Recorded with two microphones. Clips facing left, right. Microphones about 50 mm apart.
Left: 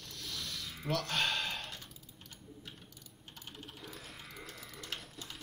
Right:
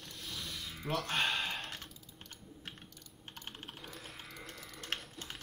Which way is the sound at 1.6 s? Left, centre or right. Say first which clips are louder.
Right 2 dB; right.